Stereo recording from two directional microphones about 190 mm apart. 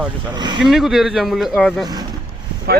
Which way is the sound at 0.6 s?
Centre (ahead or behind).